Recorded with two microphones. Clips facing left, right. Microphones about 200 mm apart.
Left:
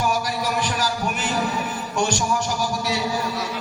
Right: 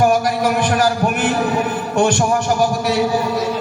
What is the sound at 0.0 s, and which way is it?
Heart sounds, 55° right (ahead or behind).